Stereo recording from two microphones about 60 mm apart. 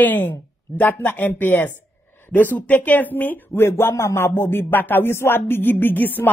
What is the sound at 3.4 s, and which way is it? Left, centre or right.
Speech, left.